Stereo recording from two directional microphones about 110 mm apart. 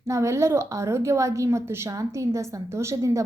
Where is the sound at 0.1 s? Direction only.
25° right (ahead or behind).